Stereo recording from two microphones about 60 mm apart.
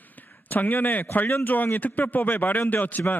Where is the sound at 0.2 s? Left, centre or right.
Left.